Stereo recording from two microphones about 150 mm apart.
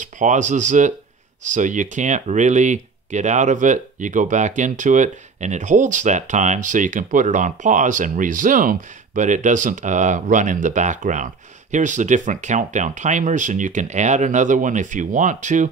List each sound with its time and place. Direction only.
0.0 s speech: 55° right (ahead or behind)